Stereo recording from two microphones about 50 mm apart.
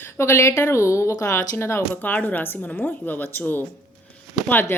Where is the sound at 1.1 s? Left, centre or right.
Left.